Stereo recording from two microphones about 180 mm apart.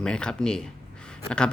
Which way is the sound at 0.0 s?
5° left (ahead or behind).